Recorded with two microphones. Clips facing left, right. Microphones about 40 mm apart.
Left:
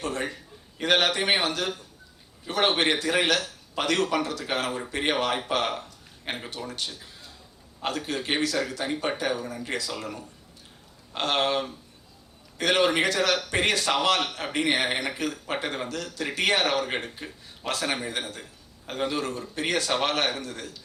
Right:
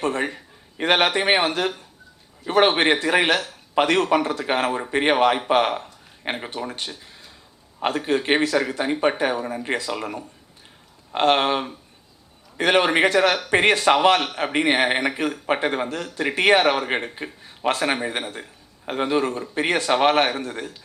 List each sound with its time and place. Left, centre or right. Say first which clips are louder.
0.0 s a man's voice: right 6 dB; right
2.7 s a man's voice: right 5 dB; right